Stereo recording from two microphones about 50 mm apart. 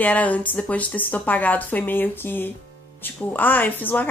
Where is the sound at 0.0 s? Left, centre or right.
Left.